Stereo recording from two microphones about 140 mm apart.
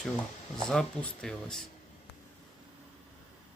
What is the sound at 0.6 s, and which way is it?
Speech, 5° left (ahead or behind).